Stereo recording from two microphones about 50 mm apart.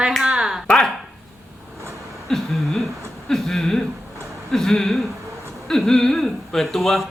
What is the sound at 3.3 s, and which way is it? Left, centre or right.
Speech, centre.